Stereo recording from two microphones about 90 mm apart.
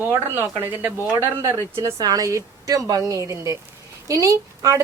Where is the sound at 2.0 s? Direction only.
45° right (ahead or behind).